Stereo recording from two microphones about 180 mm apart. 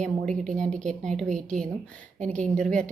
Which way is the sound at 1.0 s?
5° left (ahead or behind).